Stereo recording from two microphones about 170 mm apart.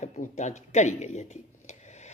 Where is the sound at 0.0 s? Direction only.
45° left (ahead or behind).